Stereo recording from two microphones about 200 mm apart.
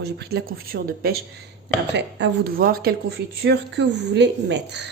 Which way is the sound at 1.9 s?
60° right (ahead or behind).